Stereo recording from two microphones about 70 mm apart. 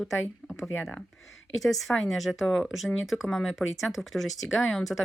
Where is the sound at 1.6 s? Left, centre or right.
Centre.